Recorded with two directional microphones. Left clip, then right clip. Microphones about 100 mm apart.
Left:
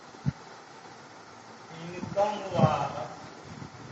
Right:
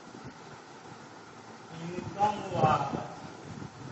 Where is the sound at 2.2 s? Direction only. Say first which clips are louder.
Even; 30° left (ahead or behind).